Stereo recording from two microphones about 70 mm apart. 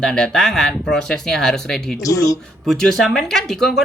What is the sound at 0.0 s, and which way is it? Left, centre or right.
Speech, centre.